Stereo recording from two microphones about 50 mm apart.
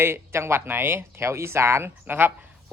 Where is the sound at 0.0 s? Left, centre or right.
Right.